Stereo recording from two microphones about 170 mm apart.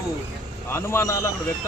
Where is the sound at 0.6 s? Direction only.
15° left (ahead or behind).